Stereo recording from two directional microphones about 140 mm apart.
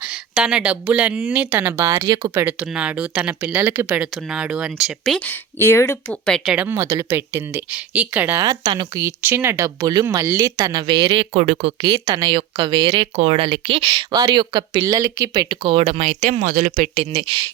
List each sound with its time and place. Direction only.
0.0 s speech: 5° right (ahead or behind); by 2.3 s 30° right (ahead or behind)
2.3 s speech: 10° right (ahead or behind)
5.2 s speech: 15° left (ahead or behind)
6.1 s speech: 5° left (ahead or behind)
6.7 s speech: 20° right (ahead or behind)
8.4 s speech: 30° right (ahead or behind)
9.0 s speech: 20° right (ahead or behind); by 11.7 s 50° right (ahead or behind)
11.8 s speech: 30° right (ahead or behind)
15.4 s speech: 40° right (ahead or behind)
16.5 s speech: 70° right (ahead or behind)
16.9 s speech: 45° right (ahead or behind)